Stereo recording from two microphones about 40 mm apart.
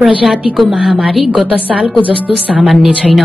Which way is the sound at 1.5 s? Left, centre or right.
Right.